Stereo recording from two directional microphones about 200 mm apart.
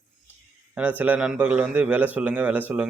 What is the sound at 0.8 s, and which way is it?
Speech, 10° right (ahead or behind).